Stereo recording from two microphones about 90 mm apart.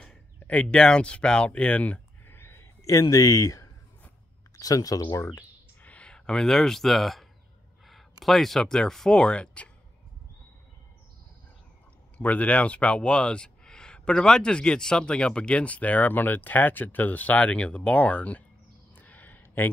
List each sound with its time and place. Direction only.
0.4 s speech: 15° left (ahead or behind); by 5.4 s 35° left (ahead or behind)
5.8 s speech: 15° left (ahead or behind)
12.2 s speech: 15° left (ahead or behind)
18.9 s a sound: 20° left (ahead or behind)